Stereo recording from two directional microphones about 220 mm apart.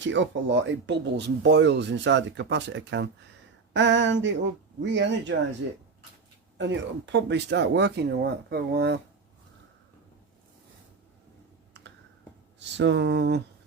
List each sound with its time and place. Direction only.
0.0 s speech: 55° right (ahead or behind)
3.7 s a sound: 55° right (ahead or behind)
6.6 s speech: 55° right (ahead or behind)
12.5 s speech: 55° right (ahead or behind)